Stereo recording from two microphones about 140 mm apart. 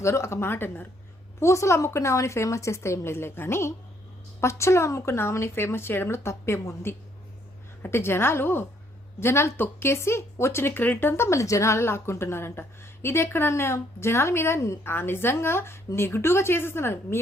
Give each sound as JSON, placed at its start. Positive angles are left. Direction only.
{"t": 0.0, "sound": "a woman's voice", "side_deg": 20}